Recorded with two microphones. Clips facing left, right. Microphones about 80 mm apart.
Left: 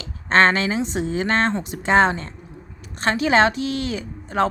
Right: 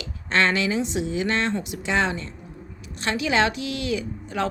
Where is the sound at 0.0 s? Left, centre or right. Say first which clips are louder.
Left 6 dB; left.